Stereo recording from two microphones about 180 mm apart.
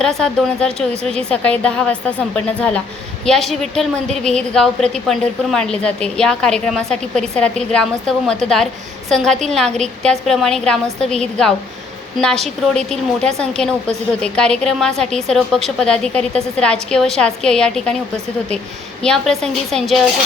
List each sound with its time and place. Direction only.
0.0 s a woman's voice: centre (ahead or behind)
19.0 s a woman's voice: centre (ahead or behind)